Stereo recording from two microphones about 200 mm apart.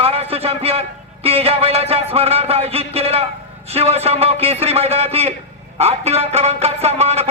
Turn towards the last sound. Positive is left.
turn(degrees=-30)  # may be behind; listen again after turning